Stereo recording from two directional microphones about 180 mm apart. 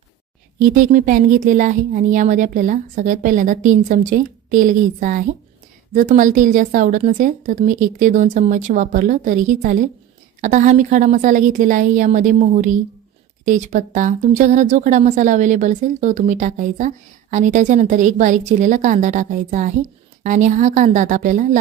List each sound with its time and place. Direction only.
0.7 s speech: 45° right (ahead or behind)